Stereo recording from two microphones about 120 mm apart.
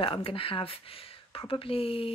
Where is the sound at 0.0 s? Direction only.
50° left (ahead or behind).